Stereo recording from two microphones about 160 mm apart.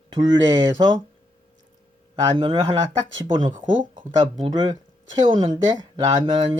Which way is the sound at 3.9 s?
30° right (ahead or behind).